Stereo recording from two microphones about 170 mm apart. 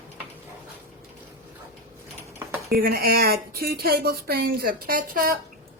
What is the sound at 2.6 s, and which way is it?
Speech, 60° right (ahead or behind).